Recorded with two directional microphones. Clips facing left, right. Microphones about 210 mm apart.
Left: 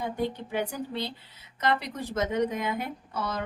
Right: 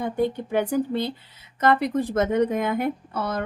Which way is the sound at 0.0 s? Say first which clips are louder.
Right 6 dB; 50° right (ahead or behind).